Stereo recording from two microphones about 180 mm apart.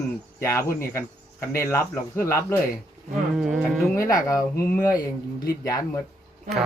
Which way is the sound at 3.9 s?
20° left (ahead or behind).